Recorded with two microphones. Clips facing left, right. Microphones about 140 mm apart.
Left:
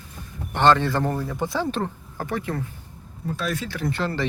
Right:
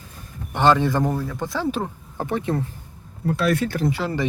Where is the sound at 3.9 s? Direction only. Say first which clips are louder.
Right 1 dB; 10° right (ahead or behind).